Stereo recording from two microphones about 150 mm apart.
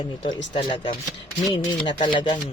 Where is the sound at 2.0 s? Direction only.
30° left (ahead or behind).